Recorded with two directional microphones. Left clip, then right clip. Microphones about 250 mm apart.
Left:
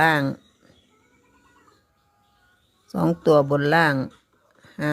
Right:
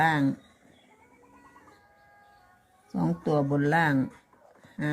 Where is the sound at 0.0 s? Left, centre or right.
Left.